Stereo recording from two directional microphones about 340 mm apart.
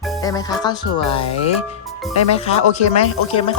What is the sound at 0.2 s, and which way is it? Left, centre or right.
Speech, centre.